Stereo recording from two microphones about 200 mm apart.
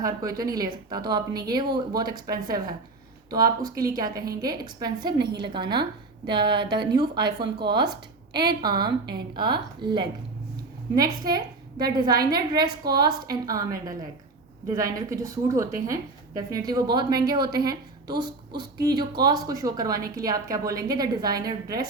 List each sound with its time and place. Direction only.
0.0 s a woman's voice: 15° right (ahead or behind)
5.1 s a woman's voice: 55° right (ahead or behind)
5.4 s a woman's voice: 20° right (ahead or behind)
14.9 s a woman's voice: 15° right (ahead or behind)